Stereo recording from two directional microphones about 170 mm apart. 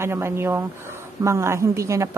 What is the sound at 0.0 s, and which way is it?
A woman's voice, 15° right (ahead or behind).